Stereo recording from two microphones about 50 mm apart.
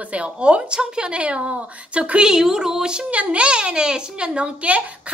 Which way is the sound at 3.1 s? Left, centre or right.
Right.